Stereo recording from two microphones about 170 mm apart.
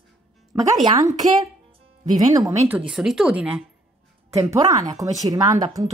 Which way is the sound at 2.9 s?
5° right (ahead or behind).